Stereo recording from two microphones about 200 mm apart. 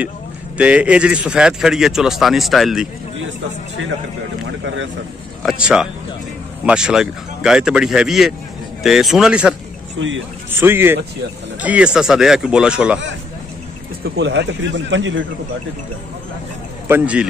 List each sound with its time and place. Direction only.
0.6 s speech: 5° right (ahead or behind)
4.5 s speech: 70° right (ahead or behind)
5.4 s a man's voice: 5° right (ahead or behind)
9.9 s speech: 70° right (ahead or behind)
10.6 s speech: 10° right (ahead or behind)
14.0 s speech: 60° right (ahead or behind)
16.8 s a man's voice: 10° right (ahead or behind)